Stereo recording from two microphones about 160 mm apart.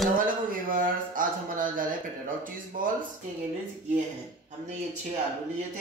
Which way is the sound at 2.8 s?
60° right (ahead or behind).